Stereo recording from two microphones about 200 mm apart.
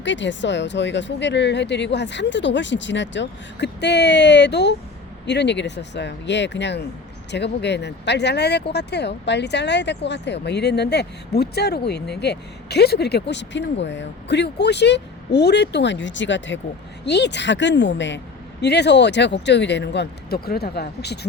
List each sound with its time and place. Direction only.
0.0 s speech: 65° left (ahead or behind)